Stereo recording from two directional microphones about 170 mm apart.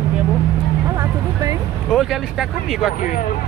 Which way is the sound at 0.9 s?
20° right (ahead or behind).